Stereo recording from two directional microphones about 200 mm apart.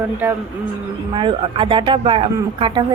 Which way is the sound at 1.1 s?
25° right (ahead or behind).